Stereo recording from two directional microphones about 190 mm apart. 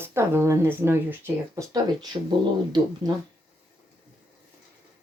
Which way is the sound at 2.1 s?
25° right (ahead or behind).